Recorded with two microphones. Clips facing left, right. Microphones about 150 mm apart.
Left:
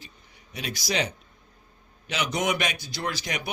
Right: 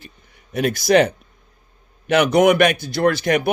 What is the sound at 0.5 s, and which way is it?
Speech, 55° right (ahead or behind).